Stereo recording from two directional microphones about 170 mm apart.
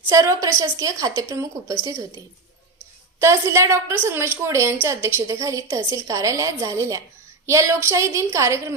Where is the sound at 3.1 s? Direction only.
15° right (ahead or behind).